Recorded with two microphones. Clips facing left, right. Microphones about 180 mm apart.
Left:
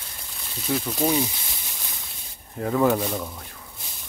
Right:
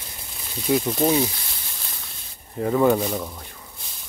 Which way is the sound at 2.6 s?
Centre (ahead or behind).